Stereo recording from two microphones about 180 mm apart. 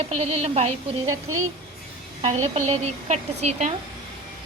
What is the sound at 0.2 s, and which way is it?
Speech, 35° right (ahead or behind).